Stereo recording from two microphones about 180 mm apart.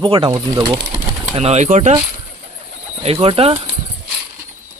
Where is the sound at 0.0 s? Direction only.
25° right (ahead or behind).